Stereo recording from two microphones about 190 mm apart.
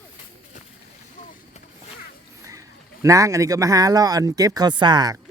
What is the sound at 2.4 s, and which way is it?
A man's voice, 15° right (ahead or behind).